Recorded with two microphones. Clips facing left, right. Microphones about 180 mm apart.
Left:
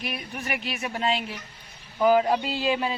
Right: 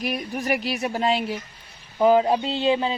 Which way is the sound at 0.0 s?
40° right (ahead or behind).